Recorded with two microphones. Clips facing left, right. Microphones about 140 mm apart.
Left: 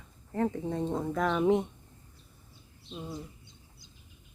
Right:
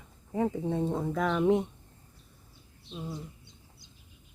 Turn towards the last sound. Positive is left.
turn(degrees=0)  # may be behind; listen again after turning